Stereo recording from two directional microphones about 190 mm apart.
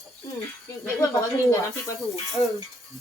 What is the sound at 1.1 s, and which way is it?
Speech, 15° left (ahead or behind).